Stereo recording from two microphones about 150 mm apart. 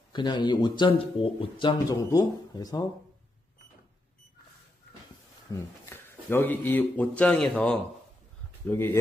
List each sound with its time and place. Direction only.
0.1 s speech: 30° left (ahead or behind)
5.5 s a man's voice: 15° left (ahead or behind)